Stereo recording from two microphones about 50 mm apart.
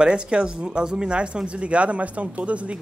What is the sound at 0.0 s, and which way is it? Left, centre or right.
A woman's voice, right.